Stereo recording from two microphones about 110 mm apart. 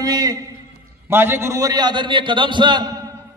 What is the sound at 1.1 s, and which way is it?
A man's voice, 20° right (ahead or behind).